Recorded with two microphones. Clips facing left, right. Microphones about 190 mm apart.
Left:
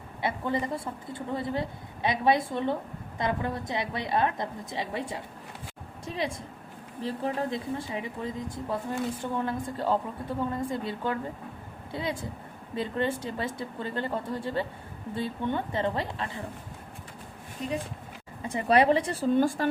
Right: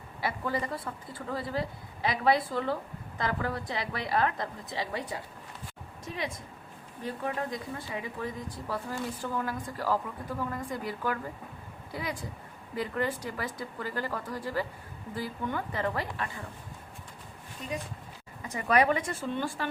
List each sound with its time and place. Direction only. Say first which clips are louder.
0.2 s speech: left 3 dB; 25° left (ahead or behind)
17.6 s speech: left 5 dB; 35° left (ahead or behind)